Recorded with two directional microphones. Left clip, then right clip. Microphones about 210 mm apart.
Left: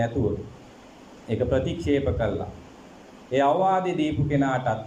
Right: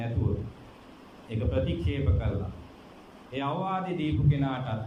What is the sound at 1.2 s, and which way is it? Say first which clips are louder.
A man's voice: left 7 dB; 55° left (ahead or behind).